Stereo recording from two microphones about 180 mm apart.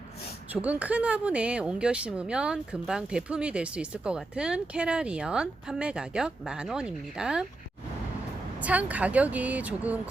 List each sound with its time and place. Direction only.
0.5 s speech: 10° right (ahead or behind)
8.6 s speech: 10° right (ahead or behind)